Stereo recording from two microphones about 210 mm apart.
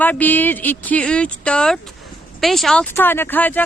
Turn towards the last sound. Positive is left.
turn(degrees=10)  # may be behind; listen again after turning